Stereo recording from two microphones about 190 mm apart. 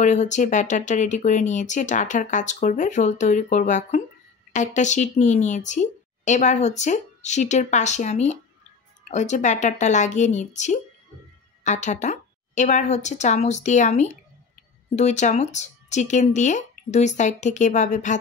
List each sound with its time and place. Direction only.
0.0 s speech: 40° left (ahead or behind)